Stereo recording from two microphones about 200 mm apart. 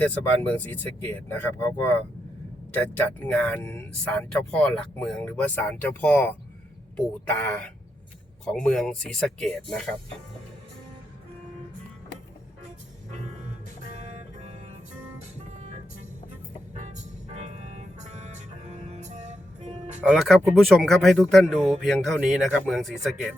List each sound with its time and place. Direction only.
0.0 s speech: 10° left (ahead or behind)
8.4 s speech: 5° left (ahead or behind)
16.7 s music: 35° right (ahead or behind)
20.1 s speech: centre (ahead or behind)